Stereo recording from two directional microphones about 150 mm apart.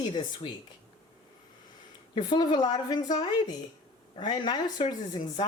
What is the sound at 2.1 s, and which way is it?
Speech, 30° left (ahead or behind).